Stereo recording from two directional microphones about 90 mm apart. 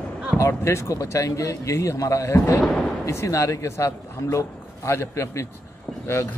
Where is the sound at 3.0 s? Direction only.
35° left (ahead or behind).